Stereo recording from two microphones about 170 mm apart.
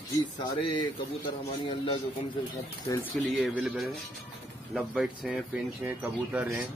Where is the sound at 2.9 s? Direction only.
20° left (ahead or behind).